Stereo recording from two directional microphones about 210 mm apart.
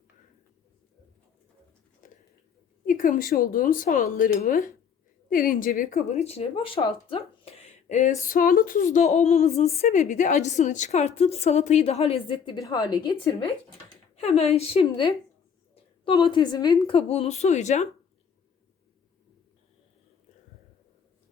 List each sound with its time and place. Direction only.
2.8 s speech: 40° left (ahead or behind); by 13.5 s 20° left (ahead or behind)
14.2 s a woman's voice: 30° left (ahead or behind)
16.3 s a woman's voice: 20° left (ahead or behind)